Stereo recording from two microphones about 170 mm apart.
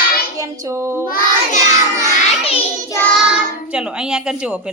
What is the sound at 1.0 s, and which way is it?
Child singing, 55° left (ahead or behind).